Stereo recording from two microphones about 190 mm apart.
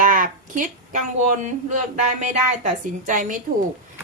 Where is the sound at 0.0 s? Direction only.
45° right (ahead or behind).